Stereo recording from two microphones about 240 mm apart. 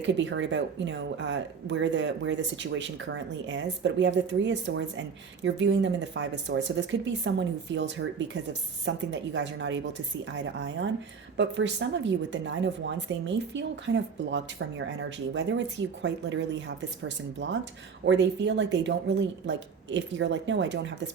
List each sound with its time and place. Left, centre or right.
0.0 s a woman's voice: right